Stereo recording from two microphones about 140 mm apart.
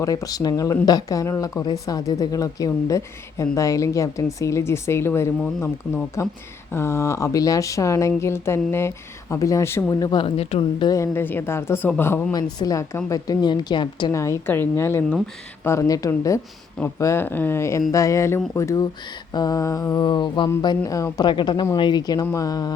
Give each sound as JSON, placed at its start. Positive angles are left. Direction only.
{"t": 0.0, "sound": "speech", "side_deg": 25}
{"t": 10.8, "sound": "speech", "side_deg": 20}
{"t": 12.3, "sound": "a woman's voice", "side_deg": 30}
{"t": 14.1, "sound": "a woman's voice", "side_deg": 20}